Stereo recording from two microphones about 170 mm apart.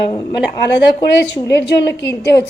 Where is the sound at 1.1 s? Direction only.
90° left.